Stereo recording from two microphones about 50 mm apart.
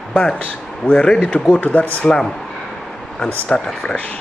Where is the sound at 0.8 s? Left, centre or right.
Left.